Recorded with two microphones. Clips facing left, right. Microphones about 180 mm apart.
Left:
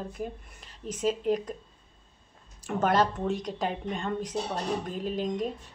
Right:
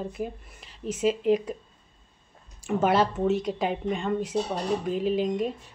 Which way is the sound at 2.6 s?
10° right (ahead or behind).